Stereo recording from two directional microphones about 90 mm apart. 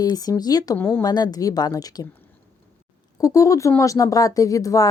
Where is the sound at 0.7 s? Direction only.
25° left (ahead or behind).